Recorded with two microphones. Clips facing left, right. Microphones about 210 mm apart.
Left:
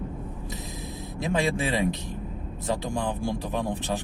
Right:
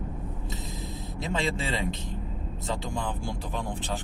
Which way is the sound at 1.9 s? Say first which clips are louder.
Left 3 dB; 20° right (ahead or behind).